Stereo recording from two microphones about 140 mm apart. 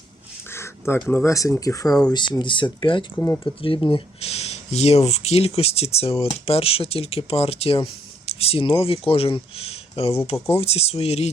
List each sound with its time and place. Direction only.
0.5 s a sound: 20° left (ahead or behind)
1.0 s speech: 20° left (ahead or behind); by 3.1 s 35° left (ahead or behind)
3.2 s speech: 15° left (ahead or behind)
3.4 s speech: 40° left (ahead or behind)